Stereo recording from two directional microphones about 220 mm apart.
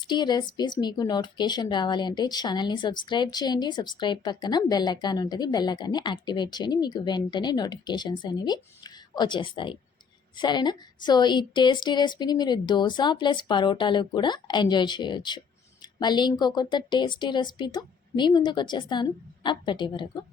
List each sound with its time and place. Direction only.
0.0 s speech: 20° left (ahead or behind)